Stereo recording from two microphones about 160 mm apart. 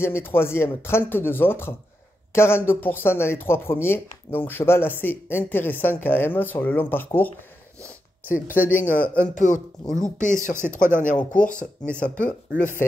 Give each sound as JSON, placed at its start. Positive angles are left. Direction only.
{"t": 0.0, "sound": "speech", "side_deg": 15}
{"t": 9.0, "sound": "speech", "side_deg": 10}
{"t": 9.3, "sound": "speech", "side_deg": 50}
{"t": 10.5, "sound": "speech", "side_deg": -15}
{"t": 10.8, "sound": "speech", "side_deg": 55}
{"t": 11.1, "sound": "speech", "side_deg": 5}